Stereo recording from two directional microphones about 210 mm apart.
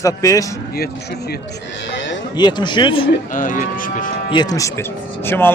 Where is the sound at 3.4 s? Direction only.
40° left (ahead or behind).